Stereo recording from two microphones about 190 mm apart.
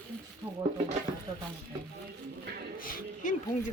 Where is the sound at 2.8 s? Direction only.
45° left (ahead or behind).